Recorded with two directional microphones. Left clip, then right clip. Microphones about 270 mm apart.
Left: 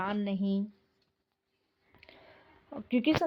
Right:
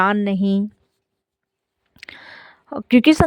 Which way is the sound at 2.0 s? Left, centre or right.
Right.